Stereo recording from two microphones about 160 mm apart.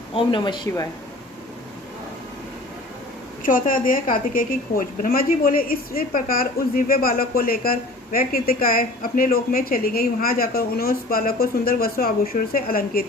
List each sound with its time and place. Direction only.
0.1 s speech: 30° left (ahead or behind)
3.4 s a woman's voice: 60° left (ahead or behind)